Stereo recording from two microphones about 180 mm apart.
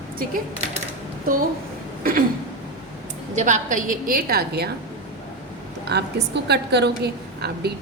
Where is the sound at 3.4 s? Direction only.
40° right (ahead or behind); by 4.6 s 60° right (ahead or behind).